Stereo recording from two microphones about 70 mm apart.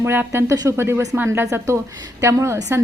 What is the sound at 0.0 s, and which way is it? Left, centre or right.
A woman's voice, right.